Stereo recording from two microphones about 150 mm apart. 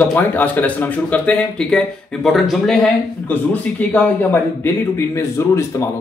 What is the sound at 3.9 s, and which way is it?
Speech, 15° left (ahead or behind).